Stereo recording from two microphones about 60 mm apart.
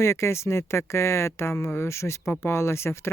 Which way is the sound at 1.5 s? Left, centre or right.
Left.